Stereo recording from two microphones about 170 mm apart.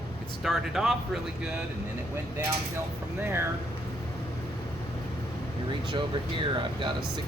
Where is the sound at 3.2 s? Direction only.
15° right (ahead or behind).